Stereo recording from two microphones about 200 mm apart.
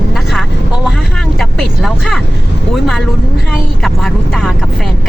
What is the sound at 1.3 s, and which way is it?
Speech, centre (ahead or behind).